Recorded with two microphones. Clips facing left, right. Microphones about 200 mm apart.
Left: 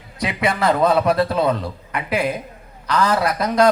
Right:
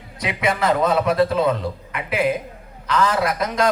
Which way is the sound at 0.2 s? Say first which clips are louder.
Left 1 dB; 40° left (ahead or behind).